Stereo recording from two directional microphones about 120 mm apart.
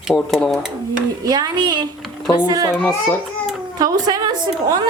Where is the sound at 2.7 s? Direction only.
20° left (ahead or behind).